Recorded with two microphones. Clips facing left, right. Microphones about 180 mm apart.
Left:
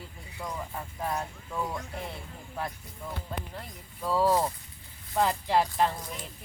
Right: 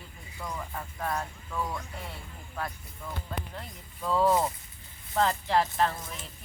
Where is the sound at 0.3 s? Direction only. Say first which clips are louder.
Left 1 dB; 10° left (ahead or behind).